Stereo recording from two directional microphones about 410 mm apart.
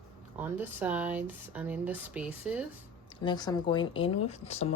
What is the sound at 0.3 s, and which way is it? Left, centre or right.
Speech, centre.